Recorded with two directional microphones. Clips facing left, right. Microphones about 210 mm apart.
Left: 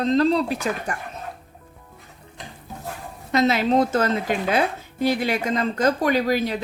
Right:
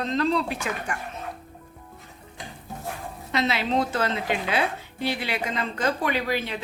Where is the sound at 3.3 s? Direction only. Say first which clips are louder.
Left 6 dB; 45° left (ahead or behind).